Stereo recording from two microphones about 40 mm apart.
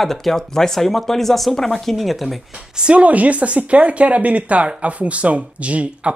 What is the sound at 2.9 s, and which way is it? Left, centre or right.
Speech, right.